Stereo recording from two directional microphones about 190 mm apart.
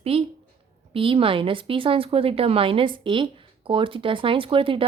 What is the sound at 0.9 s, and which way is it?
Speech, 30° right (ahead or behind).